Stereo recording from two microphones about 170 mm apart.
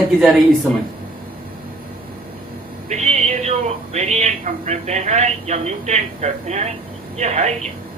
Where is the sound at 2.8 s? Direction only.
40° right (ahead or behind).